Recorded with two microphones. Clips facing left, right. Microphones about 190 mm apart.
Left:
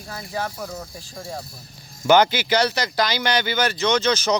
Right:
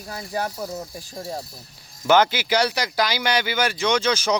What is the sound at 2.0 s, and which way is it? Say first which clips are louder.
Speech: left 2 dB; centre (ahead or behind).